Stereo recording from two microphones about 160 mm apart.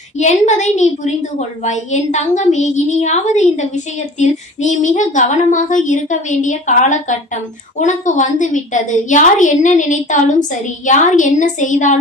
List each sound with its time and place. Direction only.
0.2 s a woman's voice: 45° left (ahead or behind)